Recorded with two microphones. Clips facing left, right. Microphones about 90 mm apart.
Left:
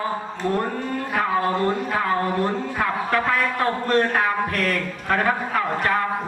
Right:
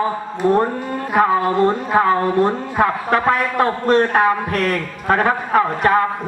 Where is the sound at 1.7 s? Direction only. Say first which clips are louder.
Right 6 dB; 30° right (ahead or behind).